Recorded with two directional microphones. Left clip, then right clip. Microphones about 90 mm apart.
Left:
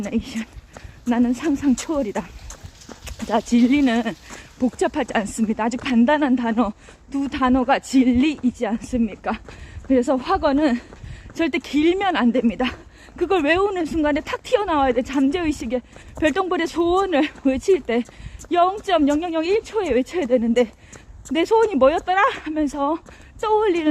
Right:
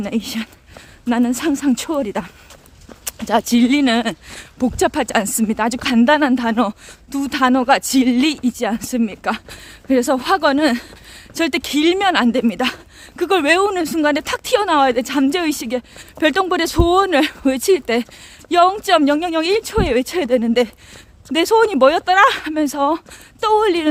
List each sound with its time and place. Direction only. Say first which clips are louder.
0.0 s speech: right 4 dB; 40° right (ahead or behind)
9.2 s speech: right 5 dB; 30° right (ahead or behind)
16.0 s speech: right 5 dB; 45° right (ahead or behind)